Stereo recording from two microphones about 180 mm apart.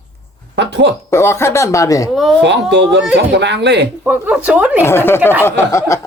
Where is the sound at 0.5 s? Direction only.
70° right (ahead or behind).